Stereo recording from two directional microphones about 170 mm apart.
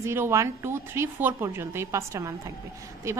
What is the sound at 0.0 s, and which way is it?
A woman's voice, 15° right (ahead or behind).